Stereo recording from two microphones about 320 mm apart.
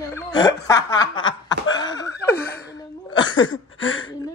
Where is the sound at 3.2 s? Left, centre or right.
Left.